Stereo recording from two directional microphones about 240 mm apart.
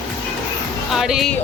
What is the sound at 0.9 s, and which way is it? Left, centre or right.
Speech, centre.